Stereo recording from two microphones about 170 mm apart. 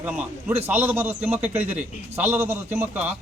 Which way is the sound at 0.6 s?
10° right (ahead or behind).